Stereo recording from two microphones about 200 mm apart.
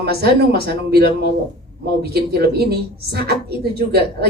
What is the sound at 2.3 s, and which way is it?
Speech, 50° right (ahead or behind).